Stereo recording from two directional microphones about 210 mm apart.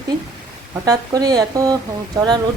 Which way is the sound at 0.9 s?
15° right (ahead or behind).